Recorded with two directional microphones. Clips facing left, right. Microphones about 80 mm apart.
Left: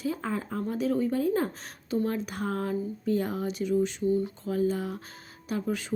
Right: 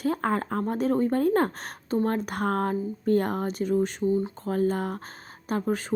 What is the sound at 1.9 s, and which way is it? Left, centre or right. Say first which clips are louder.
Speech: right 3 dB; right.